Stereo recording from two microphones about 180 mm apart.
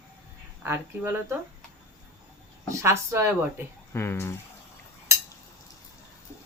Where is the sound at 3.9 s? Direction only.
15° left (ahead or behind).